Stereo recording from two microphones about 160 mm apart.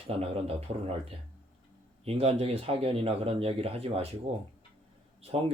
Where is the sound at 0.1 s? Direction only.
40° right (ahead or behind).